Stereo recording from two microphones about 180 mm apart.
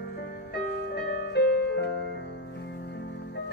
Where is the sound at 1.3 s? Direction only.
65° left (ahead or behind).